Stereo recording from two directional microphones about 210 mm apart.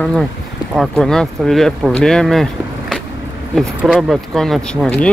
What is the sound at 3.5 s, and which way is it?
Speech, centre (ahead or behind).